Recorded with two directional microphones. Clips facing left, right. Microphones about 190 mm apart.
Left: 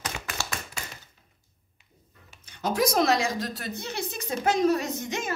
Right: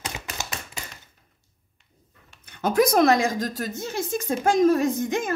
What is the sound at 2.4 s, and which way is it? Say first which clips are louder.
A woman's voice: right 5 dB; 60° right (ahead or behind).